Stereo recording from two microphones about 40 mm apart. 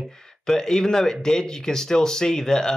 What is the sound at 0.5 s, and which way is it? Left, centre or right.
Speech, centre.